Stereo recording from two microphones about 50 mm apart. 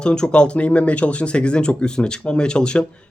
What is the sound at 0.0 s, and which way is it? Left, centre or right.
Speech, centre.